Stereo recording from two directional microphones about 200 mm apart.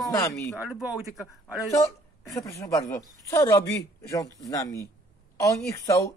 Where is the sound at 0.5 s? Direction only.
5° right (ahead or behind).